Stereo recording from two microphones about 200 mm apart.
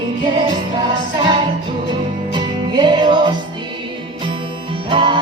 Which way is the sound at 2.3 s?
20° right (ahead or behind).